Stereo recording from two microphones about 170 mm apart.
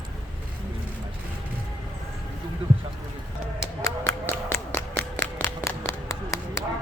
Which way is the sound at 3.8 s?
15° left (ahead or behind).